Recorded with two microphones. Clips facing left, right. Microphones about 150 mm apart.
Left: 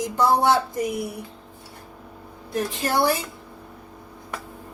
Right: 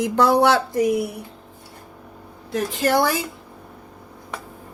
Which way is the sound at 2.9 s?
90° right.